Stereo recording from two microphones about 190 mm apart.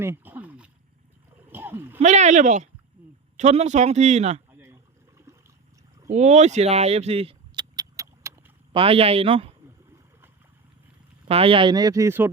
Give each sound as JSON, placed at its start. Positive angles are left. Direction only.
{"t": 0.0, "sound": "a sound", "side_deg": -10}
{"t": 2.0, "sound": "speech", "side_deg": -35}
{"t": 4.6, "sound": "water", "side_deg": -15}
{"t": 6.1, "sound": "vehicle", "side_deg": -35}
{"t": 8.7, "sound": "speech", "side_deg": -30}
{"t": 11.3, "sound": "speech", "side_deg": -30}